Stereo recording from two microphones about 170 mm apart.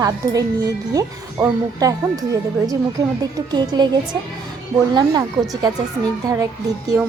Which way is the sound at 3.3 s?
25° right (ahead or behind).